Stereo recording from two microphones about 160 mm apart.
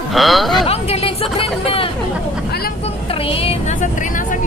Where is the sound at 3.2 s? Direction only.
35° left (ahead or behind).